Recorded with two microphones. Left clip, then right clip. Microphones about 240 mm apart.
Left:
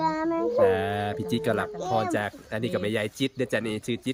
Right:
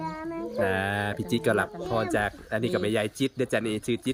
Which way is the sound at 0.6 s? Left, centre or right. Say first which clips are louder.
Left 3 dB; centre.